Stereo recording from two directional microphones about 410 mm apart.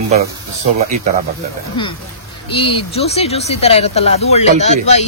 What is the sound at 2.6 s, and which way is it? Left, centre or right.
Speech, centre.